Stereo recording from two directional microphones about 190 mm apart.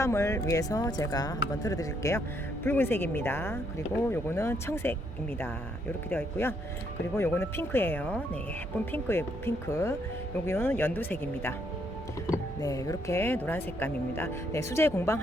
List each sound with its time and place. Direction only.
0.0 s speech: 15° left (ahead or behind)
6.1 s speech: 10° left (ahead or behind)